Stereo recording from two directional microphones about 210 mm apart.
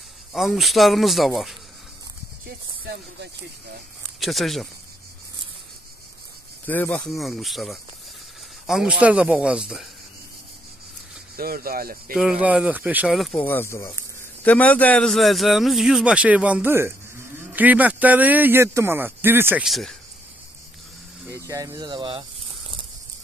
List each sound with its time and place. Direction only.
0.3 s speech: centre (ahead or behind)
2.4 s speech: 50° right (ahead or behind)
4.2 s speech: centre (ahead or behind)
6.6 s speech: 10° left (ahead or behind)
11.3 s speech: 45° right (ahead or behind)
12.1 s a man's voice: 5° right (ahead or behind)
21.3 s a man's voice: 15° right (ahead or behind)